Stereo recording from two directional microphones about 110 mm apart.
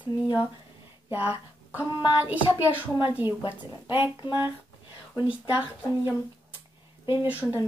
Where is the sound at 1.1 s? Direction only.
15° right (ahead or behind).